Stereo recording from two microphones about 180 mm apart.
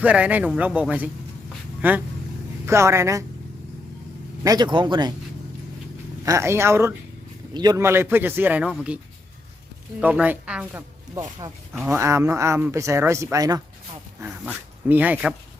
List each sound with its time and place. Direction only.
0.0 s speech: 10° right (ahead or behind)
4.4 s speech: 25° right (ahead or behind)
6.2 s speech: 15° right (ahead or behind)
10.0 s speech: 10° right (ahead or behind)
11.1 s speech: 20° right (ahead or behind)
14.2 s speech: 5° right (ahead or behind)